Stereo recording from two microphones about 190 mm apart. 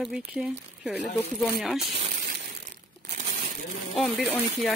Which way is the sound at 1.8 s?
30° right (ahead or behind).